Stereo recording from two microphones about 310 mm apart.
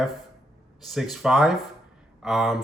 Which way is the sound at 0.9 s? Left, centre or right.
Centre.